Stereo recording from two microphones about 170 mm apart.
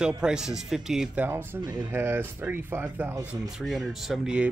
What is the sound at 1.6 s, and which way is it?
Speech, 25° right (ahead or behind).